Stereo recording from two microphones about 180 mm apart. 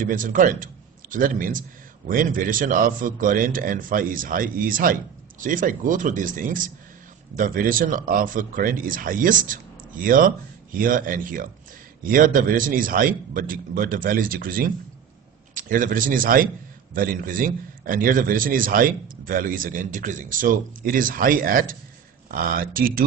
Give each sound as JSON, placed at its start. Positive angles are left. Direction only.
{"t": 0.0, "sound": "a man's voice", "side_deg": -50}